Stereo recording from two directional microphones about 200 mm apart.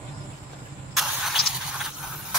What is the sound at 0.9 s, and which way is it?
Vehicle, centre (ahead or behind).